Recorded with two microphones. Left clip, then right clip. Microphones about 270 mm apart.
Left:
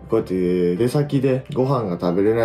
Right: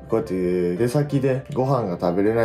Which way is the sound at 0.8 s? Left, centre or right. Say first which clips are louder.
Left 2 dB; centre.